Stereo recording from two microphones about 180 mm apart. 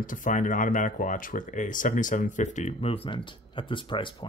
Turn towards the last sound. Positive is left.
turn(degrees=25)  # may be behind; listen again after turning